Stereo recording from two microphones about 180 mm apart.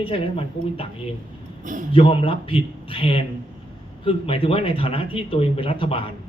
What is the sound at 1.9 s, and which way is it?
Speech, 30° left (ahead or behind).